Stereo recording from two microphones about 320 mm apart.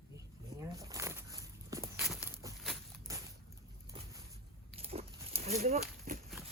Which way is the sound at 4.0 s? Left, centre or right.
Centre.